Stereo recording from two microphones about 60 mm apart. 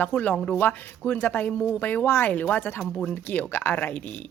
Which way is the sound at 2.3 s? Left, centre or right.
Left.